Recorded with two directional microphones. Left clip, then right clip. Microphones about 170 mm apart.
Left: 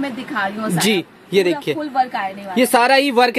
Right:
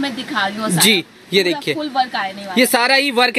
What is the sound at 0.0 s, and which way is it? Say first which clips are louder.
A woman's voice: right 2 dB; 15° left (ahead or behind).